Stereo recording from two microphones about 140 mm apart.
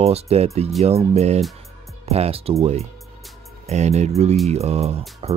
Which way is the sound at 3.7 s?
50° right (ahead or behind).